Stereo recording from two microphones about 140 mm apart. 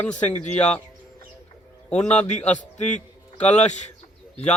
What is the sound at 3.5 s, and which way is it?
Speech, 55° left (ahead or behind).